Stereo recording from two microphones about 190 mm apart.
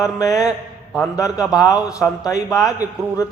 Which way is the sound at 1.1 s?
15° left (ahead or behind).